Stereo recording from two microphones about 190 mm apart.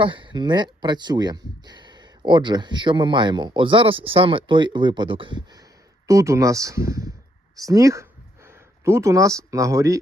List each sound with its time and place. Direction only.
0.0 s speech: 25° right (ahead or behind)